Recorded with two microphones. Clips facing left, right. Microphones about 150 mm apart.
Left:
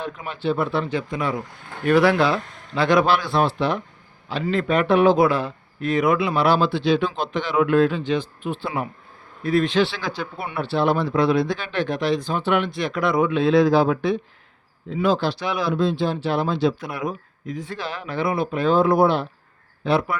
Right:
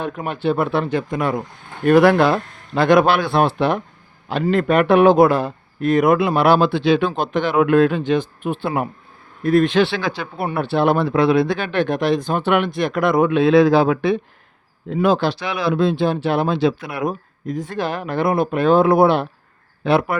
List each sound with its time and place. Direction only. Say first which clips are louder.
0.0 s a man's voice: right 5 dB; 55° right (ahead or behind)
10.5 s speech: right 3 dB; 55° right (ahead or behind)
14.8 s speech: right 4 dB; 55° right (ahead or behind)
17.1 s a man's voice: right 5 dB; 40° right (ahead or behind); by 20.1 s 60° right (ahead or behind)